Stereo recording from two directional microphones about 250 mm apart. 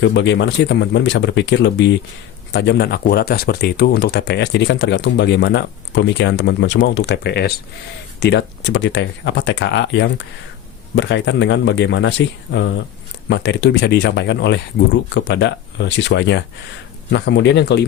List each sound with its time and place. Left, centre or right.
0.0 s speech: left